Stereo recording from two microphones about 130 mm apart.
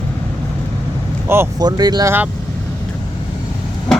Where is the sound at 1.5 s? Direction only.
30° right (ahead or behind).